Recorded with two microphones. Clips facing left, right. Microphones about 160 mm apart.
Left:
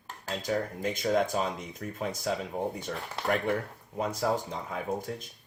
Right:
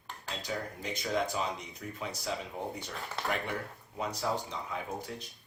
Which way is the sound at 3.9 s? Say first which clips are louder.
Left 5 dB; 50° left (ahead or behind).